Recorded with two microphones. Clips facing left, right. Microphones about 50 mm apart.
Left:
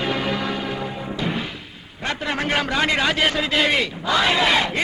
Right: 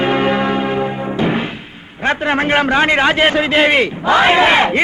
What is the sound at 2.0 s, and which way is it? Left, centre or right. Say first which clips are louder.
A man's voice: right 9 dB; right.